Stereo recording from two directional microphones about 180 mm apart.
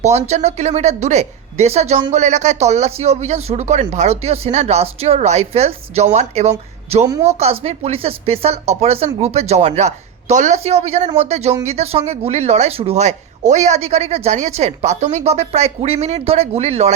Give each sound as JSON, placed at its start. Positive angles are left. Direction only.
{"t": 0.0, "sound": "speech", "side_deg": -40}
{"t": 7.0, "sound": "speech", "side_deg": -15}
{"t": 7.3, "sound": "speech", "side_deg": -35}